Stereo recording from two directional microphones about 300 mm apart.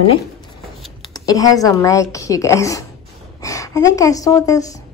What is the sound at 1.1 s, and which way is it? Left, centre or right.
A woman's voice, centre.